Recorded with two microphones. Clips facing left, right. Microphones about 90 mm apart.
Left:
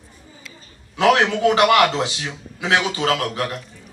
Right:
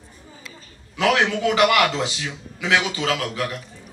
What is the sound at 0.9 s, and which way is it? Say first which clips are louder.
A man's voice: left 3 dB; 35° left (ahead or behind).